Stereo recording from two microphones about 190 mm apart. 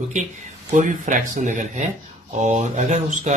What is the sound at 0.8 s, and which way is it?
Speech, 40° right (ahead or behind).